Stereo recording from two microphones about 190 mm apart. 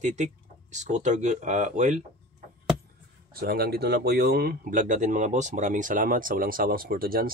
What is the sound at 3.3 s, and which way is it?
Speech, 55° right (ahead or behind).